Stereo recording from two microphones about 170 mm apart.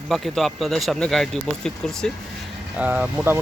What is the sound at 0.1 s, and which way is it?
Speech, centre (ahead or behind).